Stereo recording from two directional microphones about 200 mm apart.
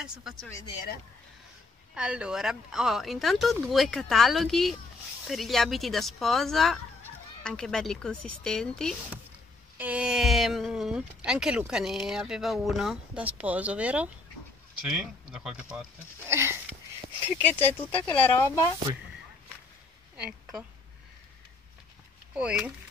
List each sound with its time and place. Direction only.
0.0 s speech: 5° right (ahead or behind)
2.0 s speech: 5° right (ahead or behind)
17.4 s speech: 10° left (ahead or behind)
20.2 s speech: 5° right (ahead or behind)
22.3 s speech: 5° right (ahead or behind)